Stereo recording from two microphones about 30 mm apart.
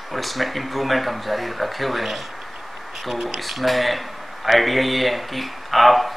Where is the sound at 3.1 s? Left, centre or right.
Centre.